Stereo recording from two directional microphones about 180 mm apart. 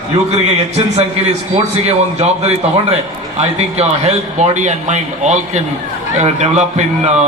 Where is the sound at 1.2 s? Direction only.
35° right (ahead or behind).